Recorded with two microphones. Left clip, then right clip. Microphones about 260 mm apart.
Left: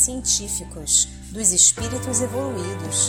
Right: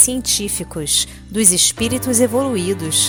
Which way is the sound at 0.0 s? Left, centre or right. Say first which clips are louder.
Right 4 dB; right.